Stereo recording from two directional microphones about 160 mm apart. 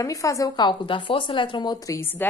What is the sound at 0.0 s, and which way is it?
A woman's voice, 20° left (ahead or behind).